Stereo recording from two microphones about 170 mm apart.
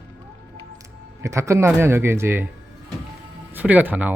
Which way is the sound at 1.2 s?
15° right (ahead or behind).